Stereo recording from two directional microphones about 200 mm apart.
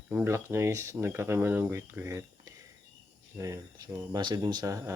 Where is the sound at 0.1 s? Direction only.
10° right (ahead or behind).